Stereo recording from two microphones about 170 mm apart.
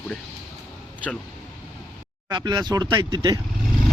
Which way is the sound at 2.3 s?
25° right (ahead or behind).